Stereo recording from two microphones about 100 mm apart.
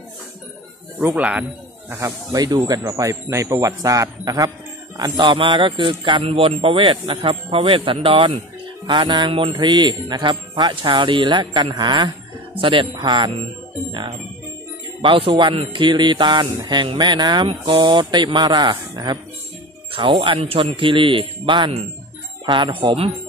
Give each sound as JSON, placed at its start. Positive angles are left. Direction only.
{"t": 0.9, "sound": "speech", "side_deg": -15}
{"t": 1.9, "sound": "a man's voice", "side_deg": -30}
{"t": 4.9, "sound": "speech", "side_deg": -45}
{"t": 8.8, "sound": "music", "side_deg": -50}
{"t": 12.5, "sound": "speech", "side_deg": -55}
{"t": 15.0, "sound": "speech", "side_deg": -60}
{"t": 15.7, "sound": "music", "side_deg": -50}
{"t": 19.9, "sound": "speech", "side_deg": -60}